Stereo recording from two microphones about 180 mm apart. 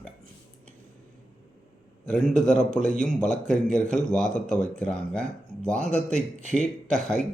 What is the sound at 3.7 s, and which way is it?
Speech, 40° left (ahead or behind).